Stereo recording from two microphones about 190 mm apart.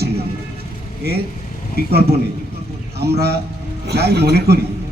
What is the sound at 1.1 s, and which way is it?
Speech, 55° right (ahead or behind).